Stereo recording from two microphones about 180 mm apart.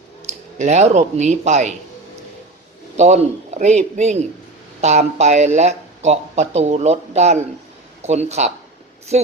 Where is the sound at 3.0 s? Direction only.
40° right (ahead or behind).